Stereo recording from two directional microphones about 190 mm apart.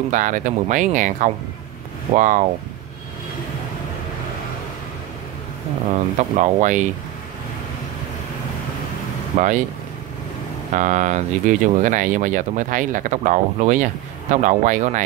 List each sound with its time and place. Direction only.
0.1 s speech: 45° right (ahead or behind)
5.9 s speech: 40° right (ahead or behind)
9.3 s speech: 40° right (ahead or behind)
10.7 s speech: 40° right (ahead or behind)